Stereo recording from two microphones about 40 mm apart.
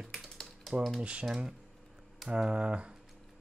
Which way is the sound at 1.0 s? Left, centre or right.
Right.